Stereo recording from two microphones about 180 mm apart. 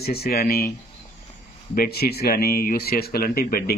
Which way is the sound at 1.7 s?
60° left (ahead or behind).